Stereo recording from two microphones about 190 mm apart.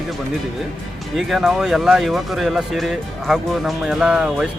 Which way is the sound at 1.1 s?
Centre (ahead or behind).